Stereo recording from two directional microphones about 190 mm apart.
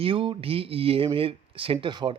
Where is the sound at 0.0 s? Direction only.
25° right (ahead or behind).